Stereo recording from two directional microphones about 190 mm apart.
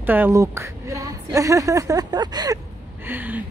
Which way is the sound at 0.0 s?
10° right (ahead or behind).